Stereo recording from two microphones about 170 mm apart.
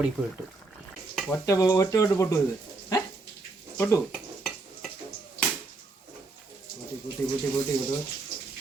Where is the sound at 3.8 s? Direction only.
15° left (ahead or behind).